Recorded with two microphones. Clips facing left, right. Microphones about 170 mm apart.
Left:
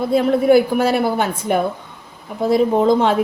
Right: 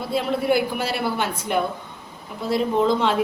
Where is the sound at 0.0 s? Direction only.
45° left (ahead or behind).